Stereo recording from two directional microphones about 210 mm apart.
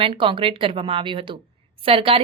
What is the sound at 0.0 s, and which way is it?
Speech, 25° right (ahead or behind).